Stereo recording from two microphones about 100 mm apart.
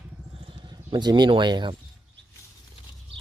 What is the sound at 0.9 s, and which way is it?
Speech, 45° right (ahead or behind).